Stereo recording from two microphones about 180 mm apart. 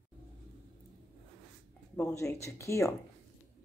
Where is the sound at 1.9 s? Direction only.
15° left (ahead or behind).